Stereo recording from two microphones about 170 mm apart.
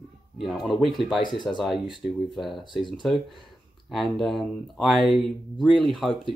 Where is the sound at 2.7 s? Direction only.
25° left (ahead or behind).